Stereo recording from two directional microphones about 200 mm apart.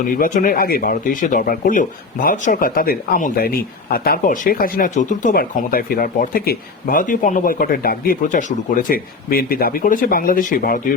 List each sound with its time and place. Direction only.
0.0 s speech: 40° left (ahead or behind)